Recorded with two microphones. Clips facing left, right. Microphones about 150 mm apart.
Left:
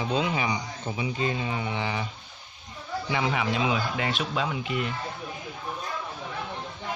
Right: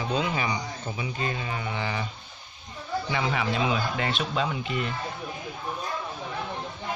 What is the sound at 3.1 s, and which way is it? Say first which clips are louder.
Speech: left 2 dB; 10° left (ahead or behind).